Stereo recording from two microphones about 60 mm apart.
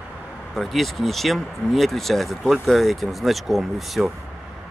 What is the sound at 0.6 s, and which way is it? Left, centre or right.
Speech, centre.